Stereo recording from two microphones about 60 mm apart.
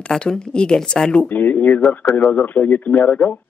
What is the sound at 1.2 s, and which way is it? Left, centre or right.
A man's voice, left.